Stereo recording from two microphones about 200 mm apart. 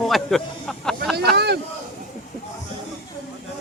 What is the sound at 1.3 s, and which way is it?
Speech, 55° right (ahead or behind).